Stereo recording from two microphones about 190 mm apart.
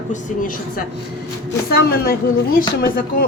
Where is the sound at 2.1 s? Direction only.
50° left (ahead or behind).